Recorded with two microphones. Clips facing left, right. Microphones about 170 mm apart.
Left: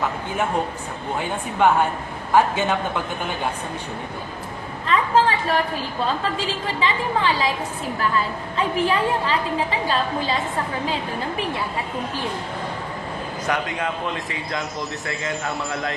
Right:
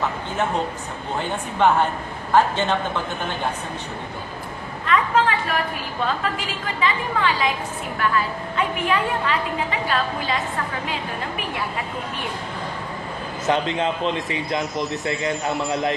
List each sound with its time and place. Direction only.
1.2 s speech: 5° left (ahead or behind)
4.9 s a sound: 30° left (ahead or behind)
6.1 s a woman's voice: 30° left (ahead or behind)
8.5 s a woman's voice: 30° left (ahead or behind)
13.5 s a man's voice: 25° right (ahead or behind)